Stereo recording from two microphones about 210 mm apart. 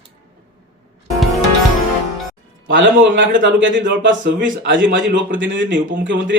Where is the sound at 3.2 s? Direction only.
60° right (ahead or behind).